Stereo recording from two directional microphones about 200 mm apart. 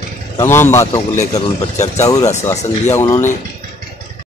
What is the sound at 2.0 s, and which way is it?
Speech, 20° left (ahead or behind).